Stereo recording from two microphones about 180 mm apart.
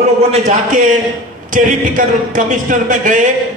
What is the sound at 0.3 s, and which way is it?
A man's voice, 40° right (ahead or behind).